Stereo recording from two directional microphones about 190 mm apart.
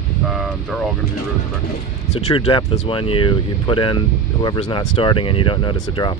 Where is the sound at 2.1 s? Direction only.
30° left (ahead or behind).